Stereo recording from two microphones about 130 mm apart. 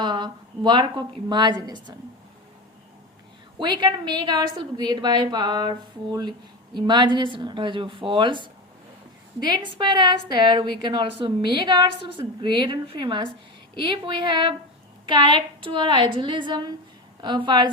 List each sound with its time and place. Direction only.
0.0 s a woman's voice: 35° right (ahead or behind)
3.6 s a woman's voice: 35° right (ahead or behind)